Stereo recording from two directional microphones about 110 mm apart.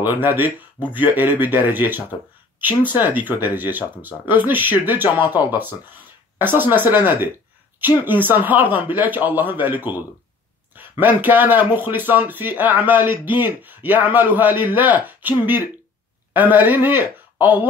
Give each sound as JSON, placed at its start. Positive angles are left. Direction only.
{"t": 0.0, "sound": "speech", "side_deg": -20}